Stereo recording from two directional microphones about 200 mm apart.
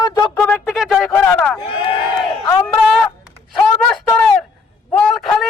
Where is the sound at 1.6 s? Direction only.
25° left (ahead or behind).